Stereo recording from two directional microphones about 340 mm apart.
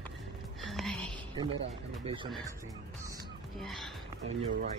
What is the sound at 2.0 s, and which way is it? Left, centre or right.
Speech, centre.